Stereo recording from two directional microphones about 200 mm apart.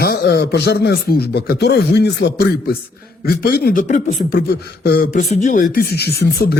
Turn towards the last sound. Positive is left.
turn(degrees=55)  # may be behind; listen again after turning